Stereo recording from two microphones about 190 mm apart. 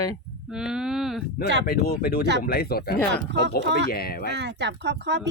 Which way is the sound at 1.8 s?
55° left (ahead or behind).